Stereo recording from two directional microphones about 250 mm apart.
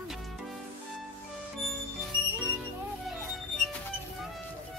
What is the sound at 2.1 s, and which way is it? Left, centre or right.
Music, centre.